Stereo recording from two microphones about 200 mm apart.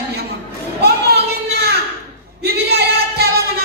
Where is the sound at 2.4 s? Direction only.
55° right (ahead or behind).